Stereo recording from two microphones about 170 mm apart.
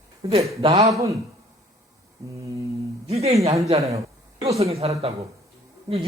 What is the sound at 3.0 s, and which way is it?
Speech, 35° right (ahead or behind).